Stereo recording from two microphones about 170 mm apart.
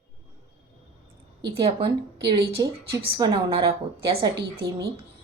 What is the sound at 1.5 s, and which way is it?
Speech, 35° right (ahead or behind).